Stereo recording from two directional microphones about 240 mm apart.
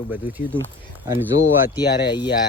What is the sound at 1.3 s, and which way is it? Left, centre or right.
Speech, left.